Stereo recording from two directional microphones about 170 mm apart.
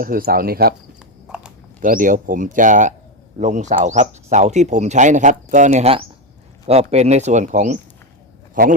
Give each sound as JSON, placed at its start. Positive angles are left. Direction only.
{"t": 0.0, "sound": "speech", "side_deg": -60}
{"t": 1.8, "sound": "speech", "side_deg": -50}